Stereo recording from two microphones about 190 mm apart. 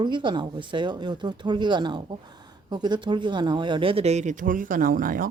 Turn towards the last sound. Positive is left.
turn(degrees=-45)  # may be behind; listen again after turning